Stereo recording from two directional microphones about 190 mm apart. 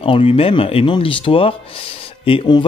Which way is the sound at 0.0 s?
30° left (ahead or behind).